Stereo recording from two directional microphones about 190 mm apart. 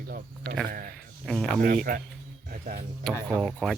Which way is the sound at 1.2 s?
5° left (ahead or behind).